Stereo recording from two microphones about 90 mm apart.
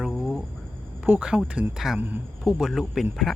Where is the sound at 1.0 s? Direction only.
15° right (ahead or behind).